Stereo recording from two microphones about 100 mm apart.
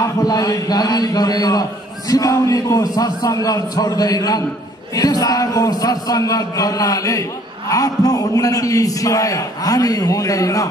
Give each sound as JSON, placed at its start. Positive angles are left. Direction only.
{"t": 0.0, "sound": "a man's voice", "side_deg": 40}